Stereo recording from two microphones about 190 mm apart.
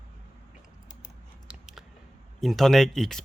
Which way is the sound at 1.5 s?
Centre (ahead or behind).